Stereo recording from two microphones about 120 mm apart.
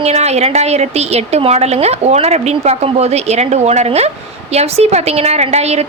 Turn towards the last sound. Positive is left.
turn(degrees=-65)  # may be behind; listen again after turning